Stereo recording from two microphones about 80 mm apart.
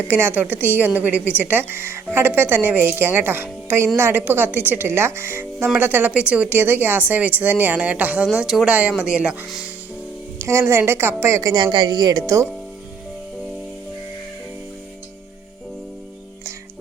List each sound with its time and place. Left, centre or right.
0.1 s a woman's voice: right
8.3 s speech: centre
10.3 s a woman's voice: right
11.5 s speech: right